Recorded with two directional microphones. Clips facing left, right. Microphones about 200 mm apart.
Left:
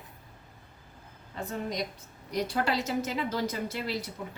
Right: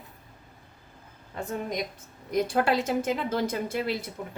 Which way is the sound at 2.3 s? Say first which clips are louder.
Right 5 dB; 50° right (ahead or behind).